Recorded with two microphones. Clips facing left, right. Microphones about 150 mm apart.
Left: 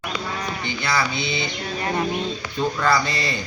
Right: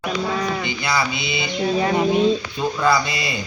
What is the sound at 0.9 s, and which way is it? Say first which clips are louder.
Speech: even; 10° right (ahead or behind).